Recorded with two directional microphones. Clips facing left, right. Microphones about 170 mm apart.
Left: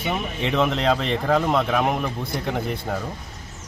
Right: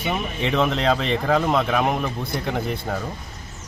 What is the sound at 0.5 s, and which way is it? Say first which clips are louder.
Speech: even; 10° left (ahead or behind).